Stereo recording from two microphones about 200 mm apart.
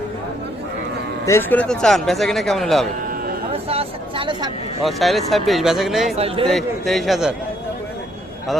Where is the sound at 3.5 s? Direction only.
30° right (ahead or behind).